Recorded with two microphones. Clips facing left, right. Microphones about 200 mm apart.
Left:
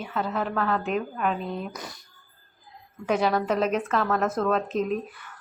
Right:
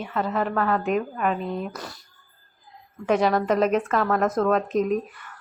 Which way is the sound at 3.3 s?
Centre (ahead or behind).